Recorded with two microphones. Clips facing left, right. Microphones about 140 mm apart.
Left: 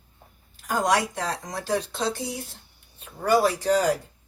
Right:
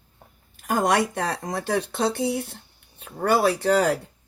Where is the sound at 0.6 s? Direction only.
55° right (ahead or behind).